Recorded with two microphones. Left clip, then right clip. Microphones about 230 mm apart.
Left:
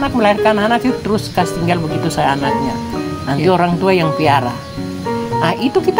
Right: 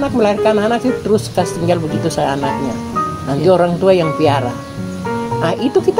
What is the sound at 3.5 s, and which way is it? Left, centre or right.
Speech, left.